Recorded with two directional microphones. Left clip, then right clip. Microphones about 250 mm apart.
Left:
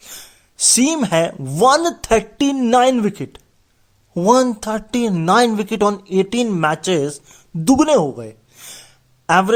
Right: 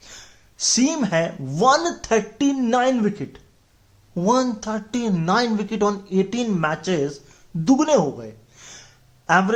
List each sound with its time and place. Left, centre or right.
0.0 s speech: left